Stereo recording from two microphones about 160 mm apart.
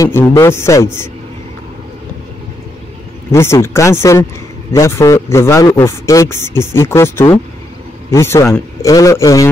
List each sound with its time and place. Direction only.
0.0 s a man's voice: 20° left (ahead or behind)
3.3 s a man's voice: 15° left (ahead or behind)